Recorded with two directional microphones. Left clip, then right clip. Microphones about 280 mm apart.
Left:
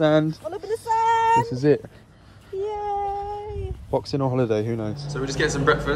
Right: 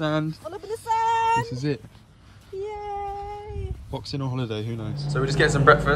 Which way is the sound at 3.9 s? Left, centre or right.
Centre.